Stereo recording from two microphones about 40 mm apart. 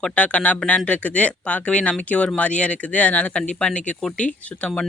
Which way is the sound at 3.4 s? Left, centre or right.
Centre.